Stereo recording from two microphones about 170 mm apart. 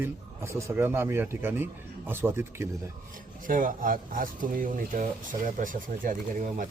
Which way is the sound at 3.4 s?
55° right (ahead or behind).